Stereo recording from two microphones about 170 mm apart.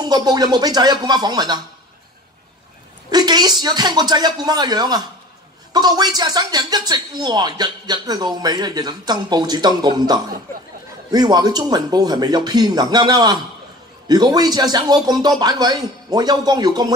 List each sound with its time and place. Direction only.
0.0 s speech: 25° right (ahead or behind)
3.1 s speech: 25° right (ahead or behind)